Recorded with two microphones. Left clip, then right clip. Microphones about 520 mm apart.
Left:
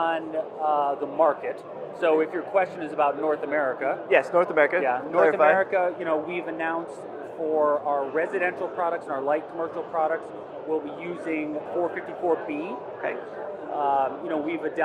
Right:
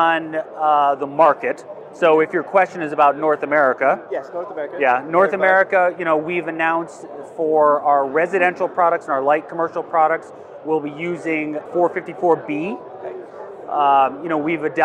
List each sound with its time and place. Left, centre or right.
0.0 s speech: right
4.1 s speech: left
4.8 s speech: right
13.7 s speech: right